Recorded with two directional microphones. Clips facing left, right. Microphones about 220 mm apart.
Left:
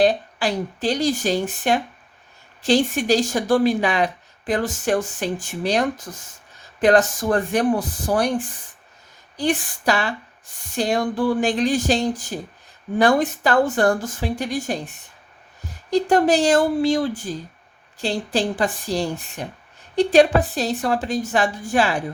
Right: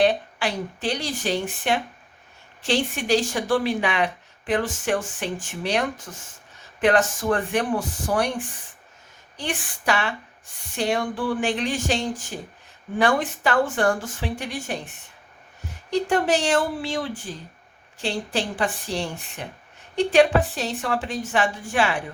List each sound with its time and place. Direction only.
0.0 s speech: 35° left (ahead or behind)
6.8 s speech: 40° left (ahead or behind)
9.4 s speech: 40° left (ahead or behind)
15.9 s speech: 40° left (ahead or behind)